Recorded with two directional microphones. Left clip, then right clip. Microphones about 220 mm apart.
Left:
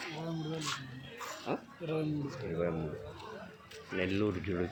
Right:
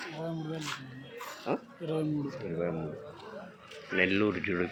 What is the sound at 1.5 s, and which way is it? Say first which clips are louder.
Speech: right 5 dB; 10° right (ahead or behind).